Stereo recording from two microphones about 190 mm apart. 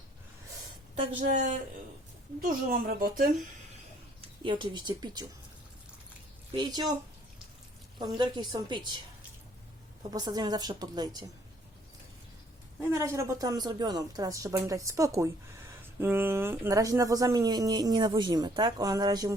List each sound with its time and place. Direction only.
1.2 s a woman's voice: 40° right (ahead or behind)
2.6 s speech: 50° right (ahead or behind)
4.4 s speech: 25° right (ahead or behind)
6.6 s speech: 20° right (ahead or behind)
7.9 s speech: 25° right (ahead or behind)
10.1 s speech: 20° right (ahead or behind)
12.9 s a woman's voice: 15° right (ahead or behind)